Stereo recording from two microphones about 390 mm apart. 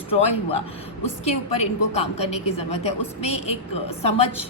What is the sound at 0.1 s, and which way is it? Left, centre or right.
A woman's voice, centre.